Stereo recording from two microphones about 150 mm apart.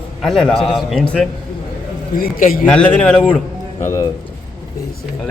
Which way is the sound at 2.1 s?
75° left (ahead or behind).